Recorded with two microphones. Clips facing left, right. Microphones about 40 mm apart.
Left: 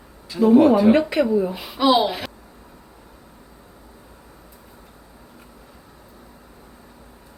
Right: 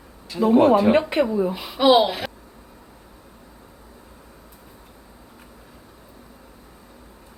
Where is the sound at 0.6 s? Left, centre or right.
Right.